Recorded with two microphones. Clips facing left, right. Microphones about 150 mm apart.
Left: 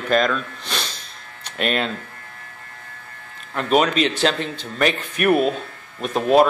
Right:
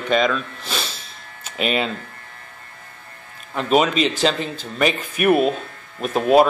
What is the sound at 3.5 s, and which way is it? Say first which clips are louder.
Speech: right 1 dB; centre (ahead or behind).